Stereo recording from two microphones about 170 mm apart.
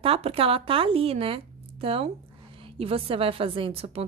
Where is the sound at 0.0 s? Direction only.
35° right (ahead or behind).